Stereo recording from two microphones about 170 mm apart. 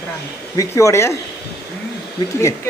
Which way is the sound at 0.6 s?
15° left (ahead or behind).